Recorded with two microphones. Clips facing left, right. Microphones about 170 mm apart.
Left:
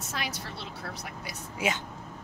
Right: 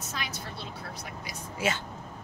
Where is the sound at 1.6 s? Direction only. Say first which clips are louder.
Even; 15° left (ahead or behind).